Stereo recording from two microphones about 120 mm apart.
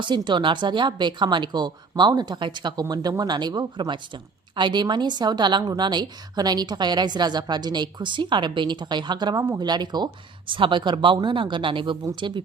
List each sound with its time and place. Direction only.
0.0 s a woman's voice: 40° right (ahead or behind)